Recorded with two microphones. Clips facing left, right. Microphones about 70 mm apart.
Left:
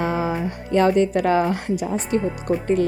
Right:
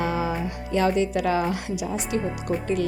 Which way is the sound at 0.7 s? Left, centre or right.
Left.